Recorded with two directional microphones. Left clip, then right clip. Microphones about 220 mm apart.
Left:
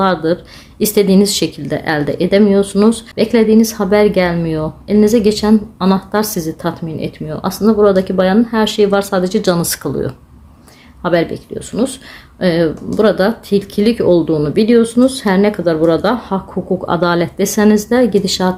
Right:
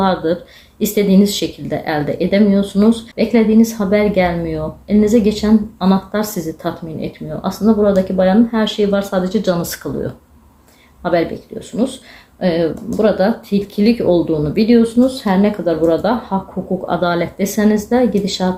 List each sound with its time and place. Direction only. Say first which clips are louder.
0.0 s speech: left 2 dB; 40° left (ahead or behind)